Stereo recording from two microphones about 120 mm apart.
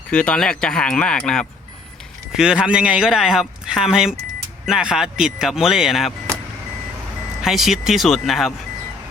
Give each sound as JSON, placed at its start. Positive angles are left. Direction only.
{"t": 0.1, "sound": "speech", "side_deg": 10}
{"t": 2.3, "sound": "speech", "side_deg": -5}
{"t": 7.4, "sound": "speech", "side_deg": 0}